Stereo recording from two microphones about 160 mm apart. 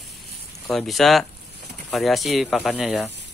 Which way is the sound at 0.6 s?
Centre (ahead or behind).